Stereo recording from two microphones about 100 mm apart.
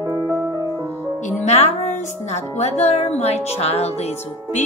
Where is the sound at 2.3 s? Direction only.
90° left.